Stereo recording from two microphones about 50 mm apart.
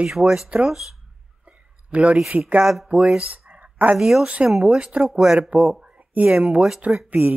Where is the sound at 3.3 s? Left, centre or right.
Right.